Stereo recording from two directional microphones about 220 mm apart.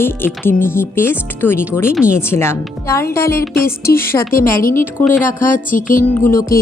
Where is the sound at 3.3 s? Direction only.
45° left (ahead or behind).